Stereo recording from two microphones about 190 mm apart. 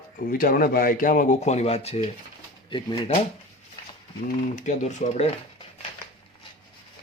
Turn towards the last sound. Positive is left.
turn(degrees=35)  # may be behind; listen again after turning